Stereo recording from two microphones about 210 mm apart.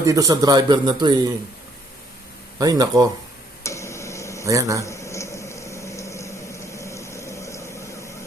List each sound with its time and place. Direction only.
0.0 s a man's voice: 15° right (ahead or behind)
2.6 s speech: 15° right (ahead or behind)
3.6 s tick-tock: 15° left (ahead or behind)
4.4 s speech: 15° right (ahead or behind)
4.8 s a sound: 15° left (ahead or behind)